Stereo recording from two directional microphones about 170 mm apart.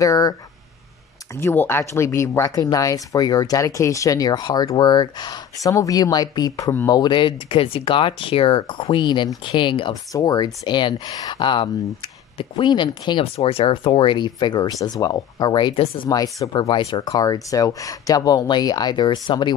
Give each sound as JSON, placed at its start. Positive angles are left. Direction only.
{"t": 0.0, "sound": "speech", "side_deg": 20}
{"t": 7.0, "sound": "speech", "side_deg": 30}
{"t": 16.1, "sound": "speech", "side_deg": 20}